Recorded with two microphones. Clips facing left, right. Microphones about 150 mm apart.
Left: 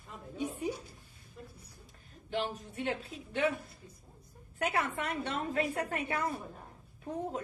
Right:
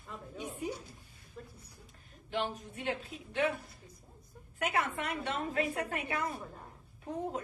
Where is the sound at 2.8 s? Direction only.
35° left (ahead or behind).